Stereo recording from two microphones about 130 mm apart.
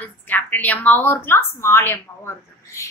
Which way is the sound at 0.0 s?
15° left (ahead or behind).